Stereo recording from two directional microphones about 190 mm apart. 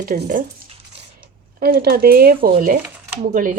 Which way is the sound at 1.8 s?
50° right (ahead or behind).